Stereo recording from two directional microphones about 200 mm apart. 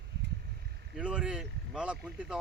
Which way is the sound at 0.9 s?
5° right (ahead or behind).